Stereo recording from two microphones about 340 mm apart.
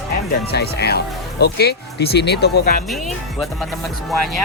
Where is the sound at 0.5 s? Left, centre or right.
Left.